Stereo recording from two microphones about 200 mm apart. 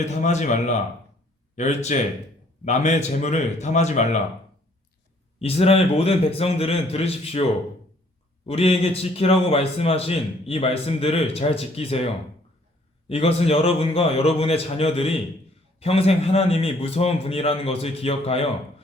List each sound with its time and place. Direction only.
0.0 s a man's voice: 35° left (ahead or behind)
5.4 s a man's voice: 30° left (ahead or behind)
8.4 s a man's voice: 30° left (ahead or behind)
13.1 s a man's voice: 30° left (ahead or behind)